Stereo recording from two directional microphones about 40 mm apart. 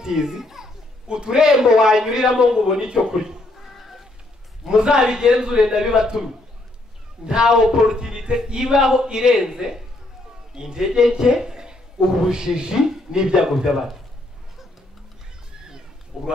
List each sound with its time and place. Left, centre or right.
0.0 s a man's voice: centre
3.6 s a sound: centre
4.6 s a man's voice: centre
7.2 s a man's voice: centre
13.5 s a man's voice: centre
16.1 s speech: centre